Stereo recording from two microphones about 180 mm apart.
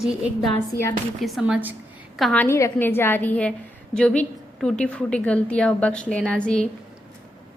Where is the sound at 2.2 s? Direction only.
5° left (ahead or behind).